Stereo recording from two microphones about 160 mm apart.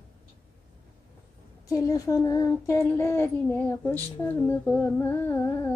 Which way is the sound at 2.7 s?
15° left (ahead or behind).